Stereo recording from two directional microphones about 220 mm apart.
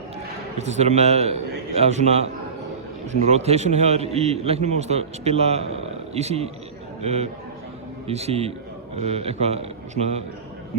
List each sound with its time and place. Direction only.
0.6 s a man's voice: 30° right (ahead or behind)